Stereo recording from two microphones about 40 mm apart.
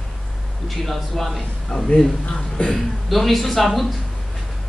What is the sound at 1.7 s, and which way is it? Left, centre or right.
Speech, centre.